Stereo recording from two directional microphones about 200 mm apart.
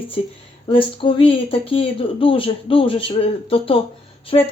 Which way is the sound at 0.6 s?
25° left (ahead or behind).